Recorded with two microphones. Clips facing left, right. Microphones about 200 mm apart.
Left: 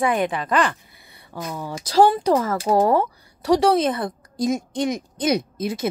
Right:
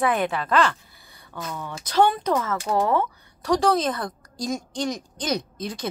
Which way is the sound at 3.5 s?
25° left (ahead or behind).